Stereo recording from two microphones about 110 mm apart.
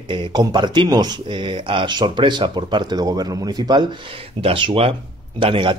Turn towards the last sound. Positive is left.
turn(degrees=-50)  # may be behind; listen again after turning